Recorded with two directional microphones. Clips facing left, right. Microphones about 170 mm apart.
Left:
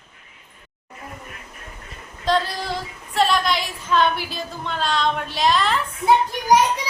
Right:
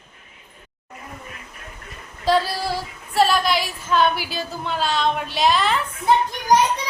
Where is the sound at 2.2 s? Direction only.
5° right (ahead or behind).